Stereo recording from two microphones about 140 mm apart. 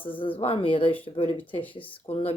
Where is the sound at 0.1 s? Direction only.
40° left (ahead or behind).